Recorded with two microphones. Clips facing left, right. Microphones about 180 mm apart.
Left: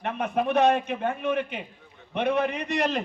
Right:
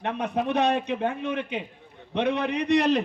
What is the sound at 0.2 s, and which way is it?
A man's voice, 50° left (ahead or behind).